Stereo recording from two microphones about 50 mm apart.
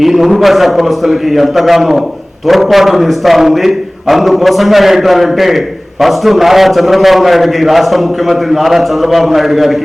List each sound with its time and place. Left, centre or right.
0.0 s a man's voice: centre